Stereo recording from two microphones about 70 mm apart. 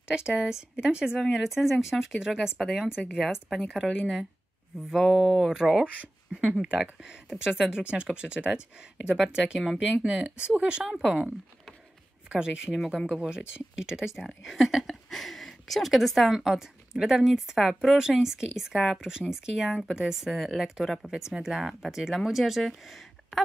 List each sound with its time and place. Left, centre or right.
0.1 s speech: centre
5.9 s speech: centre
12.3 s speech: centre